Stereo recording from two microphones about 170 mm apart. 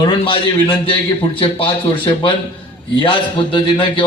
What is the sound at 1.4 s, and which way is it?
Speech, 35° left (ahead or behind).